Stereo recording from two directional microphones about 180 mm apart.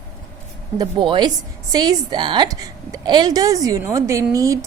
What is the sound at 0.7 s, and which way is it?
A woman's voice, 25° right (ahead or behind).